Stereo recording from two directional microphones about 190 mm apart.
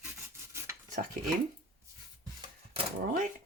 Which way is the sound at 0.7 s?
15° right (ahead or behind).